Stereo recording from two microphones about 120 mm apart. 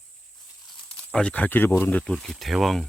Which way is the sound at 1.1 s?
10° left (ahead or behind).